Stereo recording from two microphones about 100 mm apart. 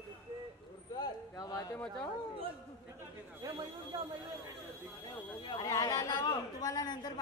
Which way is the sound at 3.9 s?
55° right (ahead or behind).